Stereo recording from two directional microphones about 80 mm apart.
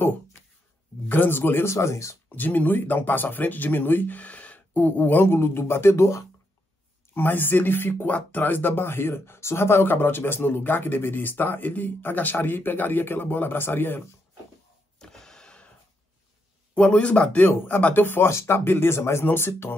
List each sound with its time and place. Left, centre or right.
1.0 s speech: left
2.2 s speech: left
7.2 s speech: left
15.0 s power windows: centre
16.7 s speech: centre